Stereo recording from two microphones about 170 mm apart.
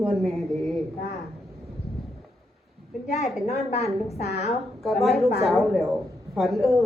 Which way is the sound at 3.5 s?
40° left (ahead or behind).